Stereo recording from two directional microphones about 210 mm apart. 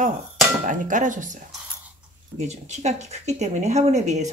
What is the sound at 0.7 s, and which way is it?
Speech, 40° right (ahead or behind).